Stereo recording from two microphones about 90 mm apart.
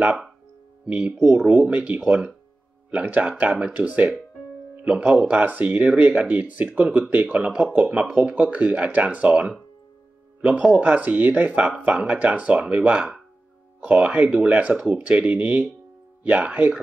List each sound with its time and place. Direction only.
0.8 s speech: 15° right (ahead or behind)